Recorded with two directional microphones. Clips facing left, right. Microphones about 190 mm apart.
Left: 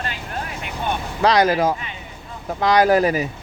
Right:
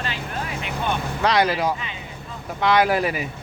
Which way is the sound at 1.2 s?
40° left (ahead or behind).